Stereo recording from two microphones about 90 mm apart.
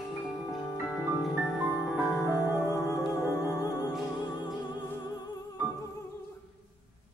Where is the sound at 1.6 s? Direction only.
30° right (ahead or behind).